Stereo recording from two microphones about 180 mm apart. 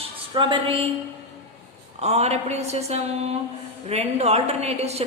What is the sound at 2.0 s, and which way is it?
A woman's voice, 35° right (ahead or behind).